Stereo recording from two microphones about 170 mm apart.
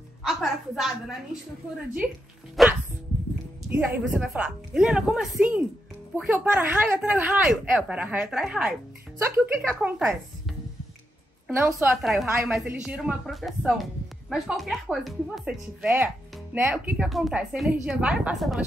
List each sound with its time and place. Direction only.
0.3 s a woman's voice: centre (ahead or behind)
2.6 s music: centre (ahead or behind)
3.6 s a woman's voice: 5° right (ahead or behind)
9.2 s a woman's voice: 15° right (ahead or behind)
9.6 s a woman's voice: 5° right (ahead or behind)
11.5 s a woman's voice: 10° right (ahead or behind)